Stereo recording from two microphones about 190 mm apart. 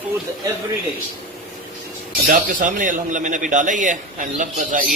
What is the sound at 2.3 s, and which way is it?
A man's voice, 45° right (ahead or behind).